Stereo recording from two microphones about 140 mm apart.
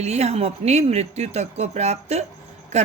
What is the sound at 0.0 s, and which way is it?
Speech, 50° right (ahead or behind).